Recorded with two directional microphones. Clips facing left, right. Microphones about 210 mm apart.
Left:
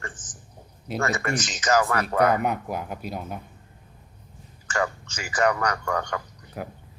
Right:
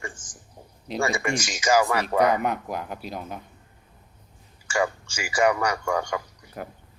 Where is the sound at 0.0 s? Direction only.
10° right (ahead or behind).